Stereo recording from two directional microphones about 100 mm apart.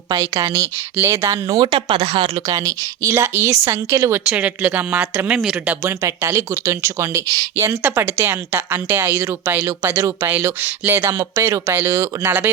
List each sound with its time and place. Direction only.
0.1 s a woman's voice: 35° right (ahead or behind)
1.5 s speech: 55° right (ahead or behind)
2.5 s speech: 35° right (ahead or behind)
4.3 s a woman's voice: 15° right (ahead or behind)
5.8 s speech: 25° right (ahead or behind)